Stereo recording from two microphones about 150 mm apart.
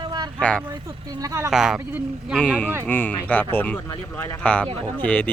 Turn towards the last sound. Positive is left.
turn(degrees=10)  # may be behind; listen again after turning